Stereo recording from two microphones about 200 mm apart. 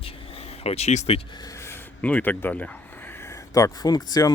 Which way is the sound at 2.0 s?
10° left (ahead or behind).